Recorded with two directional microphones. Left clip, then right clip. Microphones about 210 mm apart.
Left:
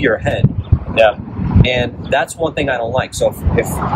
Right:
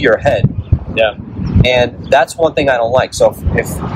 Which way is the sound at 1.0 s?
15° left (ahead or behind).